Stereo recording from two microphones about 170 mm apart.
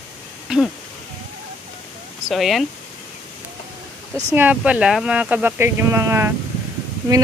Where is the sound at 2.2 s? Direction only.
Centre (ahead or behind).